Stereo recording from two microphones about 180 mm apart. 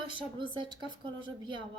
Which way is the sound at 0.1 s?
25° right (ahead or behind).